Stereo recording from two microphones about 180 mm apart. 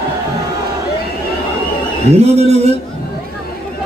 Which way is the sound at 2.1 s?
35° right (ahead or behind).